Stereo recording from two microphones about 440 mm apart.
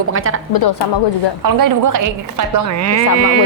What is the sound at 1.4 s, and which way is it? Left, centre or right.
Speech, right.